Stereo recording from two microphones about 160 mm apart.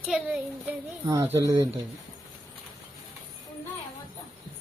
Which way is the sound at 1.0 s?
20° right (ahead or behind).